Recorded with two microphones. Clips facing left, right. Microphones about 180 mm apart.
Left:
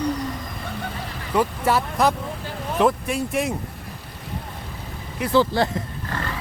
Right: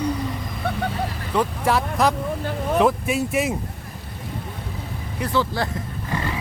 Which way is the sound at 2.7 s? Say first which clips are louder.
Even; centre (ahead or behind).